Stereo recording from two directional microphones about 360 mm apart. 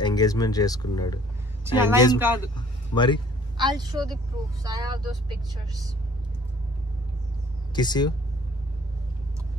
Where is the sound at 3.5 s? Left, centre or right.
Centre.